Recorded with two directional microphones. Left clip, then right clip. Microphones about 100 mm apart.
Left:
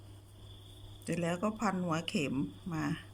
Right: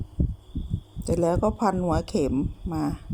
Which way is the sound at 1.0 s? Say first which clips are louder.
Right 12 dB; 50° right (ahead or behind).